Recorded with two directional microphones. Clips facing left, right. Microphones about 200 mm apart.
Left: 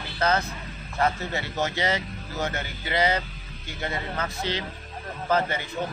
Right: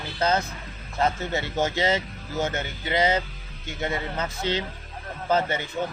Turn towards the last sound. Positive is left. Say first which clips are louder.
# right 1 dB
turn(degrees=-25)  # may be behind; listen again after turning